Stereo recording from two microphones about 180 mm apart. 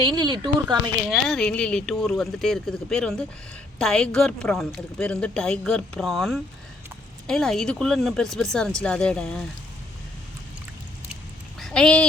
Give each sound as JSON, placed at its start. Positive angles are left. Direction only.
{"t": 0.0, "sound": "speech", "side_deg": -25}
{"t": 1.1, "sound": "speech", "side_deg": 5}
{"t": 11.6, "sound": "speech", "side_deg": 5}